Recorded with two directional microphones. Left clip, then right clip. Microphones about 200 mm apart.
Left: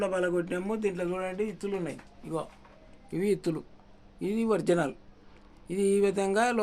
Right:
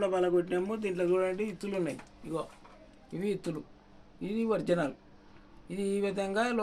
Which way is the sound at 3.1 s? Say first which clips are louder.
Left 6 dB; 60° left (ahead or behind).